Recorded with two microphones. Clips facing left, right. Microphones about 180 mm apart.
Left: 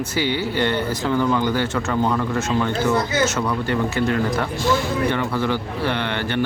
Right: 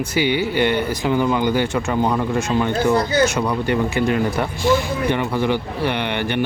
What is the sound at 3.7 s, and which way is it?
Speech, 15° right (ahead or behind).